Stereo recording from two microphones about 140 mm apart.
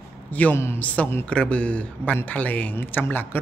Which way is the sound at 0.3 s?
10° left (ahead or behind).